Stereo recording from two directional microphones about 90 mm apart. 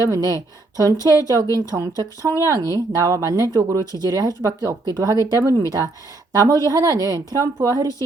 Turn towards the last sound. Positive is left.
turn(degrees=-40)  # may be behind; listen again after turning